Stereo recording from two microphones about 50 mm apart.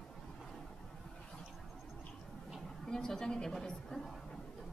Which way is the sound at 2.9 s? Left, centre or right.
Centre.